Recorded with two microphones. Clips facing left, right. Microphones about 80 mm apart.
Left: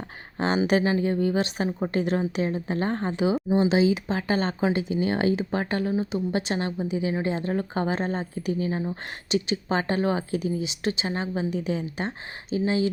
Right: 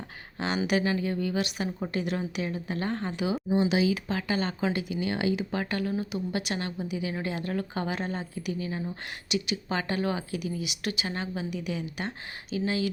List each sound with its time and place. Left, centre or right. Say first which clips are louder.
0.3 s a woman's voice: left 5 dB; left